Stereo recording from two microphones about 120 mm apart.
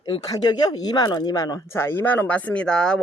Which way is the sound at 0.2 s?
35° left (ahead or behind).